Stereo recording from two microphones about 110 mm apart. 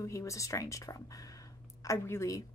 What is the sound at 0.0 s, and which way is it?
A woman's voice, 30° left (ahead or behind).